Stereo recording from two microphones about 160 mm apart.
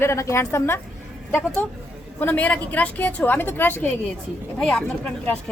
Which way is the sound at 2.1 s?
10° left (ahead or behind).